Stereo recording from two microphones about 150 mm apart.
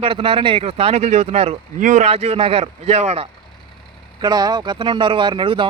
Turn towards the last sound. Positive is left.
turn(degrees=-30)  # may be behind; listen again after turning